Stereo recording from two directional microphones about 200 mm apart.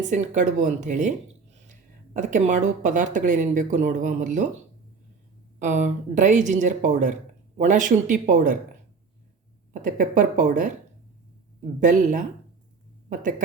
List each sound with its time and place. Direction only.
0.1 s speech: 35° right (ahead or behind)
2.1 s speech: 40° right (ahead or behind)
5.5 s speech: 35° right (ahead or behind)
9.8 s speech: 40° right (ahead or behind)
11.8 s speech: 40° right (ahead or behind)